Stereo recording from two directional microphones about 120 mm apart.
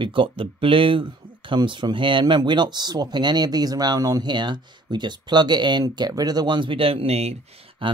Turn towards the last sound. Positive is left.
turn(degrees=-45)  # may be behind; listen again after turning